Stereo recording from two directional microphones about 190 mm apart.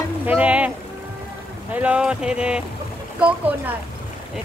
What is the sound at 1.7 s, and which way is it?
Speech, 5° right (ahead or behind).